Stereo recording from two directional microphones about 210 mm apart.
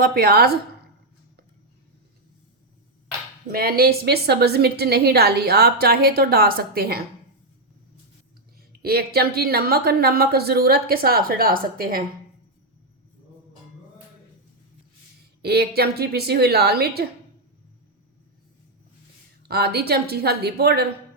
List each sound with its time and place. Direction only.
0.0 s a woman's voice: 45° right (ahead or behind)
3.5 s a woman's voice: 45° right (ahead or behind)
8.8 s a woman's voice: 45° right (ahead or behind)
15.4 s a woman's voice: 50° right (ahead or behind)
19.4 s a woman's voice: 50° right (ahead or behind)